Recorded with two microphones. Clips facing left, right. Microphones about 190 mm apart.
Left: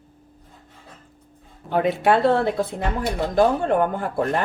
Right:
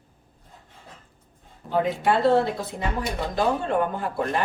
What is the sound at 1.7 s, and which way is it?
Speech, 65° left (ahead or behind).